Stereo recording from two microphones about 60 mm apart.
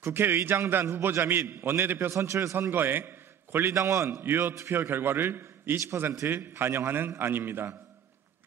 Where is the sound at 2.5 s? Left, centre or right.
Right.